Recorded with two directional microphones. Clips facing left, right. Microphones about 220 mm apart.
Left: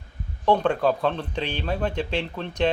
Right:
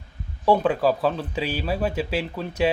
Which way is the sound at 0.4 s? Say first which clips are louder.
Right 1 dB; 5° right (ahead or behind).